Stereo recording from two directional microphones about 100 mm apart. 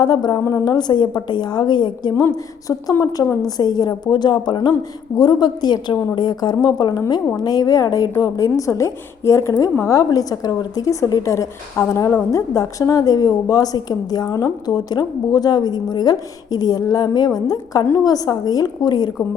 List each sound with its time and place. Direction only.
0.0 s a woman's voice: 45° left (ahead or behind)
2.2 s a woman's voice: 35° left (ahead or behind)